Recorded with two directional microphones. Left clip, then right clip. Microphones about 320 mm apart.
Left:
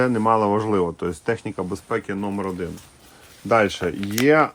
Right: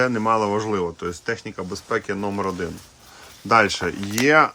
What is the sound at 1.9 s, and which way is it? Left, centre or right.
Speech, centre.